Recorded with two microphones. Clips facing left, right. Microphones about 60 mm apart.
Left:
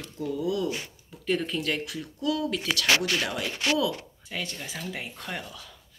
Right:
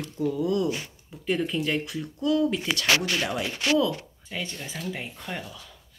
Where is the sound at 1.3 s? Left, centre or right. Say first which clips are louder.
Right 2 dB; centre.